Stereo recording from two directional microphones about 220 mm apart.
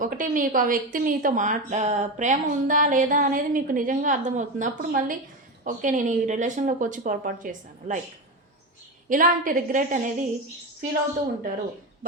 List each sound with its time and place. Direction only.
0.0 s a woman's voice: 40° right (ahead or behind)
9.0 s a woman's voice: 40° right (ahead or behind)